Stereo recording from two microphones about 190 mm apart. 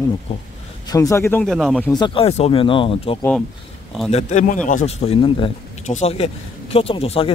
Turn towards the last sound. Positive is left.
turn(degrees=30)  # may be behind; listen again after turning